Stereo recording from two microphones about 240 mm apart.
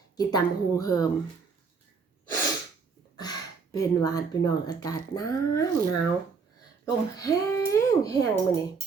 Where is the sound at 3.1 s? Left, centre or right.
Centre.